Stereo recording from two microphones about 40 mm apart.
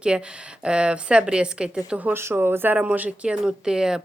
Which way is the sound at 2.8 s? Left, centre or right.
Right.